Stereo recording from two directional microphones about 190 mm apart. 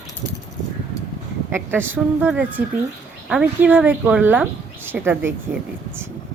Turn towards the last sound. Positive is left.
turn(degrees=-10)  # may be behind; listen again after turning